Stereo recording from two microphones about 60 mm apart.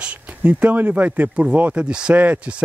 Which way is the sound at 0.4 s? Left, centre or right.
Right.